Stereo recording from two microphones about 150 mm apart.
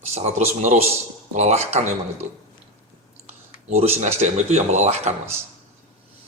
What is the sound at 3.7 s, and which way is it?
Speech, 45° right (ahead or behind).